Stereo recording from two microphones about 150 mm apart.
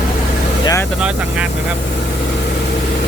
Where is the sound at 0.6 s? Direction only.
20° left (ahead or behind).